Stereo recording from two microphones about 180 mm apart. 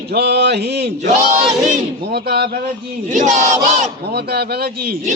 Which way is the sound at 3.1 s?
45° right (ahead or behind).